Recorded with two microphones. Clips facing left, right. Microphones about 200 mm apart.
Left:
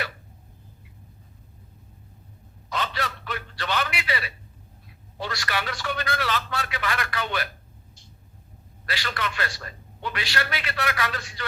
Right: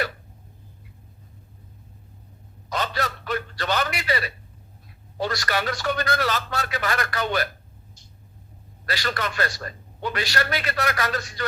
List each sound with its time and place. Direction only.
2.6 s a man's voice: 40° right (ahead or behind)
8.9 s a man's voice: 40° right (ahead or behind)